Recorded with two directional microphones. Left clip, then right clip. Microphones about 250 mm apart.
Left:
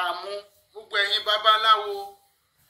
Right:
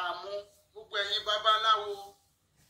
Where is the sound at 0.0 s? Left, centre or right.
Left.